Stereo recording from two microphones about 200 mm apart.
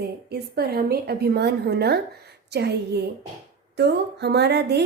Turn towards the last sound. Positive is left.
turn(degrees=-55)  # may be behind; listen again after turning